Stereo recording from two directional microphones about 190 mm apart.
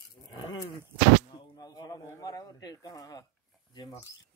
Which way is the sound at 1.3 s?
20° left (ahead or behind).